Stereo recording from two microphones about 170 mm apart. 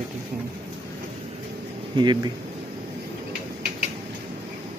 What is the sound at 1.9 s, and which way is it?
Speech, 25° right (ahead or behind).